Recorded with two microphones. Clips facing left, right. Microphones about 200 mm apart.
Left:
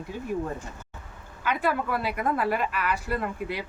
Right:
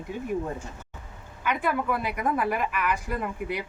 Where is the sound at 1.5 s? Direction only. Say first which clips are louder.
Even; 15° right (ahead or behind).